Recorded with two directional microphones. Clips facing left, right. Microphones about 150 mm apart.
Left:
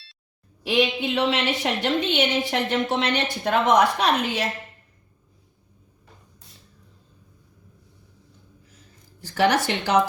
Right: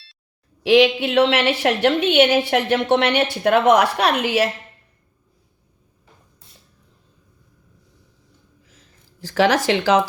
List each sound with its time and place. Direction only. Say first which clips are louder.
0.6 s a woman's voice: right 8 dB; 80° right
9.2 s speech: right 4 dB; 90° right